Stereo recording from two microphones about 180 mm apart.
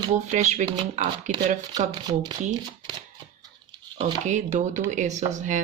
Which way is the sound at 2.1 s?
25° right (ahead or behind).